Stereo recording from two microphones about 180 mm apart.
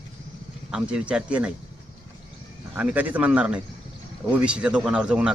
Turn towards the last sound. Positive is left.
turn(degrees=-5)  # may be behind; listen again after turning